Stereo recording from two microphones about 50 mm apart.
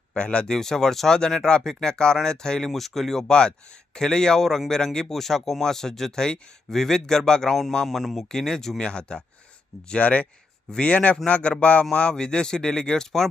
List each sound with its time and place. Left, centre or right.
0.1 s speech: left
0.5 s speech: centre
7.9 s speech: centre
8.3 s speech: centre